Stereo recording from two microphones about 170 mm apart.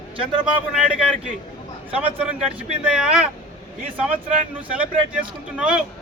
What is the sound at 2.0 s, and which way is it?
A man's voice, 10° right (ahead or behind).